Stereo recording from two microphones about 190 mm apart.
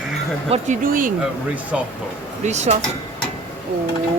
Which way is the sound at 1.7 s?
5° right (ahead or behind).